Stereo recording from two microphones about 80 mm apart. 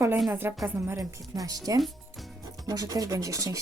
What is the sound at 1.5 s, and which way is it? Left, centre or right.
Speech, right.